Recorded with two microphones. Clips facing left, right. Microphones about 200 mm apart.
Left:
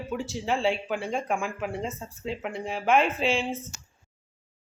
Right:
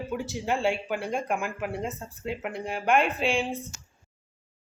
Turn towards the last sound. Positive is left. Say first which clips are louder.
# even
turn(degrees=0)  # may be behind; listen again after turning